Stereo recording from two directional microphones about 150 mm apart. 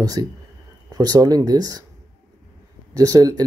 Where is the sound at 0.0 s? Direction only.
25° right (ahead or behind).